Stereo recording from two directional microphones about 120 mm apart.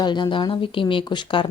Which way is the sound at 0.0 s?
40° left (ahead or behind).